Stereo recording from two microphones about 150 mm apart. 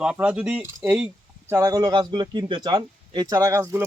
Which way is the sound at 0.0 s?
10° right (ahead or behind).